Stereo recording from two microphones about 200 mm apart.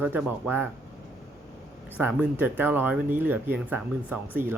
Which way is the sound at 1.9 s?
5° right (ahead or behind).